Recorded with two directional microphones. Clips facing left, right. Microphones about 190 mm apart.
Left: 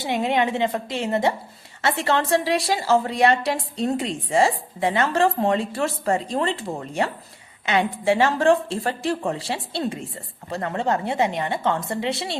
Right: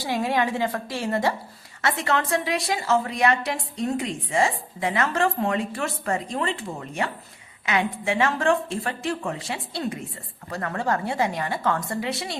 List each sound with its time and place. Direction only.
0.0 s a woman's voice: 20° left (ahead or behind)